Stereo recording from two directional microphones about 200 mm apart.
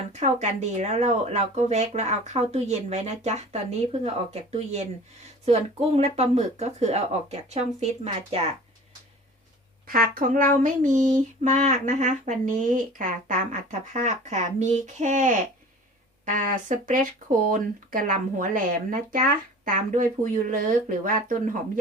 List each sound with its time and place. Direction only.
0.1 s female singing: 35° right (ahead or behind)
9.8 s female singing: 45° right (ahead or behind)
17.5 s speech: 40° right (ahead or behind)